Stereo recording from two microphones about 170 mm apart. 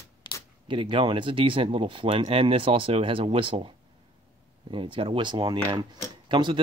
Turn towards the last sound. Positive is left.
turn(degrees=-25)  # may be behind; listen again after turning